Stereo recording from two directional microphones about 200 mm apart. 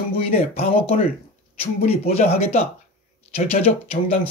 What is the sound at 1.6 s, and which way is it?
Speech, 30° left (ahead or behind).